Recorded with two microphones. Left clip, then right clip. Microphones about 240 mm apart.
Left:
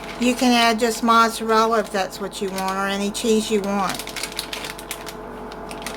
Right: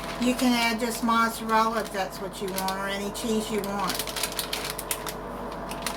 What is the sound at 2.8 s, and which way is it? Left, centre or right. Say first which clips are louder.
Speech: left 7 dB; left.